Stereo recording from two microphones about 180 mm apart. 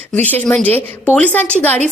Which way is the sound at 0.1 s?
10° left (ahead or behind).